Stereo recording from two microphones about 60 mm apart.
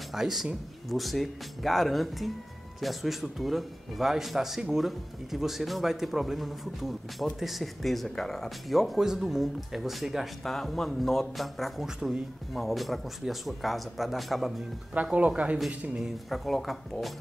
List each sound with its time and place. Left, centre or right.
0.1 s speech: centre
15.1 s speech: right
16.0 s speech: centre